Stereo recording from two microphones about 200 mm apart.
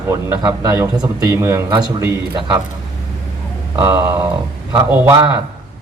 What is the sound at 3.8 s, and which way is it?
A man's voice, 15° right (ahead or behind).